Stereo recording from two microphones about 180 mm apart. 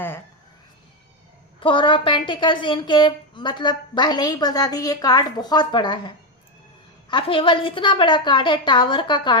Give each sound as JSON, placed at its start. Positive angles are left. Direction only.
{"t": 1.5, "sound": "a woman's voice", "side_deg": 25}